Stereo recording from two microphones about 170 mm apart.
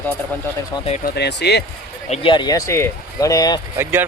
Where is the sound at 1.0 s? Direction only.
75° left (ahead or behind).